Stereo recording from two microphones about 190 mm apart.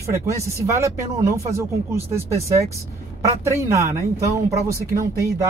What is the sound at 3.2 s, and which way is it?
Speech, 15° right (ahead or behind).